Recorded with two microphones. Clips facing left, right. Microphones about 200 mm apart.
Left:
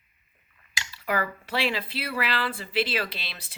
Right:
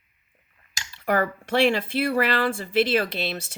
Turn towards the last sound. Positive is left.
turn(degrees=-45)  # may be behind; listen again after turning